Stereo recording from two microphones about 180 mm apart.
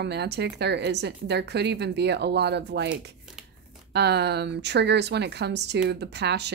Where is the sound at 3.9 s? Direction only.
70° right (ahead or behind).